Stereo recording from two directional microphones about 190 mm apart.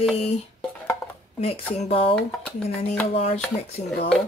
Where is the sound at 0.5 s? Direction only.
10° left (ahead or behind).